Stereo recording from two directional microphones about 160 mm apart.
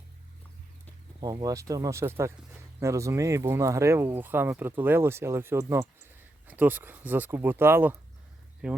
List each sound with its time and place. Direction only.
1.2 s speech: 25° right (ahead or behind); by 8.8 s 5° right (ahead or behind)